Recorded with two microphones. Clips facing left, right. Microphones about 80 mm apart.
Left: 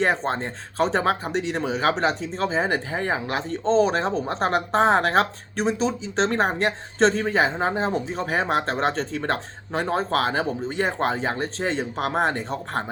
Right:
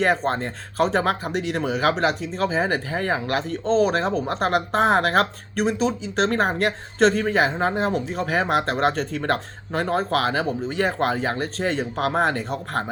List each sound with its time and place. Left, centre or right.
0.9 s speech: left
1.4 s speech: right
1.7 s speech: left